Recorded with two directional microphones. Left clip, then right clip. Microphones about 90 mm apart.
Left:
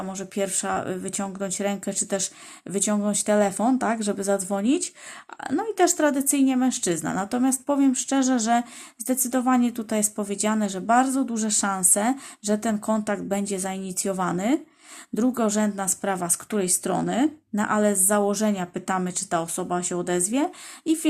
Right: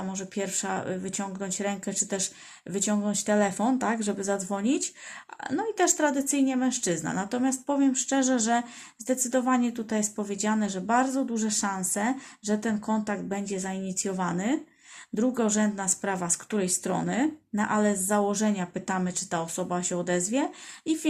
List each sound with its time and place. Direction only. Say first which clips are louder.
0.0 s a woman's voice: left 5 dB; 40° left (ahead or behind)